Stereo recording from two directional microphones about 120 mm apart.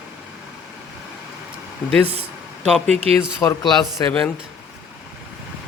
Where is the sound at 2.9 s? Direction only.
60° right (ahead or behind).